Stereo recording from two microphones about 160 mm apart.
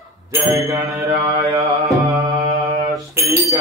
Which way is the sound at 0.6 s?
20° right (ahead or behind).